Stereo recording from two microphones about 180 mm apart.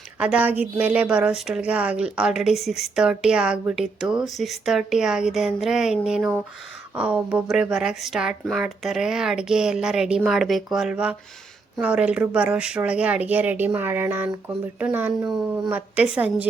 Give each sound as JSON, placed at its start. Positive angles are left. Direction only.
{"t": 0.2, "sound": "speech", "side_deg": -5}